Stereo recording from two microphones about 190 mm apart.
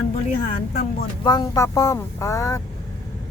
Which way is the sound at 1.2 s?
20° left (ahead or behind).